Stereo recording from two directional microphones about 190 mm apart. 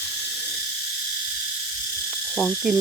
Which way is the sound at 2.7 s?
Centre (ahead or behind).